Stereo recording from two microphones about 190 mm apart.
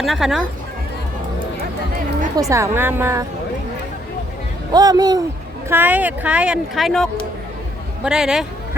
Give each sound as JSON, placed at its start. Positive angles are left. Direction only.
{"t": 0.0, "sound": "speech", "side_deg": 0}
{"t": 2.3, "sound": "speech", "side_deg": -15}
{"t": 4.7, "sound": "speech", "side_deg": -20}